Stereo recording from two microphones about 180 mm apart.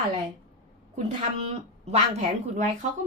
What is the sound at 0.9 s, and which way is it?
Speech, 40° right (ahead or behind).